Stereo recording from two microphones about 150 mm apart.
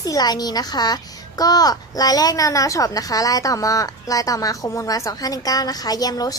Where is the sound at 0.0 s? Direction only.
25° left (ahead or behind).